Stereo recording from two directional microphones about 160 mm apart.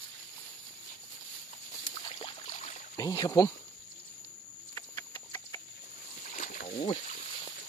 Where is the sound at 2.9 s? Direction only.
20° left (ahead or behind).